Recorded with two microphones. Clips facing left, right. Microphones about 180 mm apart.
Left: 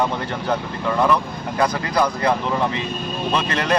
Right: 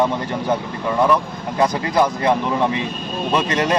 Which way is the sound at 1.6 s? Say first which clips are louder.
Right 3 dB; 20° right (ahead or behind).